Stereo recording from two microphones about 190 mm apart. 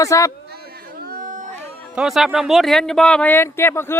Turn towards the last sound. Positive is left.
turn(degrees=15)  # may be behind; listen again after turning